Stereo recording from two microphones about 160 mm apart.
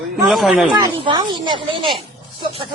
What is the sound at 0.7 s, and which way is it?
Speech, 30° right (ahead or behind).